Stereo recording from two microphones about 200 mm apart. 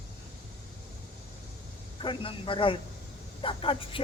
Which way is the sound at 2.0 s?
25° left (ahead or behind).